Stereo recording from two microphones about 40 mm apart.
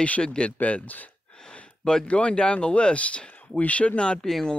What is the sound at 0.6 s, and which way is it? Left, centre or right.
Speech, left.